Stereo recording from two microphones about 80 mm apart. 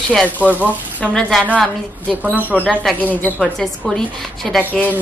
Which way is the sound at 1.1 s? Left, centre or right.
Centre.